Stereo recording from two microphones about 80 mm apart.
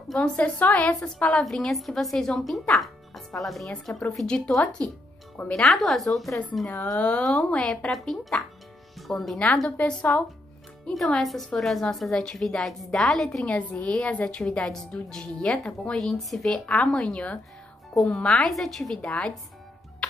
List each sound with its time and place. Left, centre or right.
0.1 s a woman's voice: centre
4.8 s a woman's voice: centre
5.5 s a woman's voice: centre
7.0 s a woman's voice: centre
9.8 s a woman's voice: centre
11.1 s a woman's voice: centre
16.0 s a woman's voice: centre
16.6 s a woman's voice: centre